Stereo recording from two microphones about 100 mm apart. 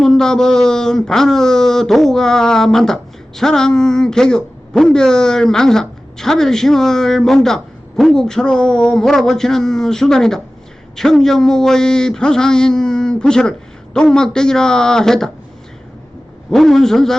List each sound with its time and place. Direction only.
0.0 s speech: 5° left (ahead or behind)
16.5 s speech: 5° left (ahead or behind)